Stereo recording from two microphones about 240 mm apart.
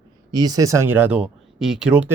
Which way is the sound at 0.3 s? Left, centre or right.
Centre.